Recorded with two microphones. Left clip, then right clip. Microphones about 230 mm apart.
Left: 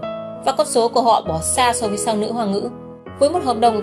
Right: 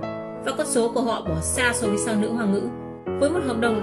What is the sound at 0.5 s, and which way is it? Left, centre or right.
A woman's voice, centre.